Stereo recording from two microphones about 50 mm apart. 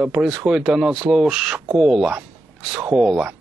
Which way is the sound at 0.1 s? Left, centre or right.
Centre.